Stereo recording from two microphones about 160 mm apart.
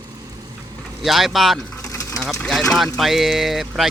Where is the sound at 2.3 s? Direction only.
Centre (ahead or behind).